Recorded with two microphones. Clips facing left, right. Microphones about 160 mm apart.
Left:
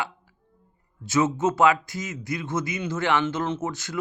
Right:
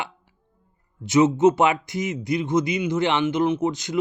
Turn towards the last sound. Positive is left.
turn(degrees=-20)  # may be behind; listen again after turning